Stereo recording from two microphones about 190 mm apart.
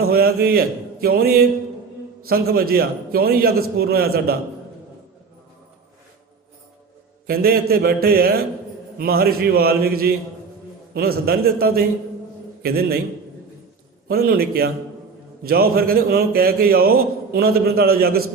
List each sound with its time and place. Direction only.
0.1 s a man's voice: 55° right (ahead or behind)
7.3 s a man's voice: 55° right (ahead or behind)
14.1 s a man's voice: 55° right (ahead or behind)